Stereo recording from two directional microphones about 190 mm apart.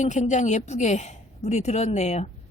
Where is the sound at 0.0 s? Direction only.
40° left (ahead or behind).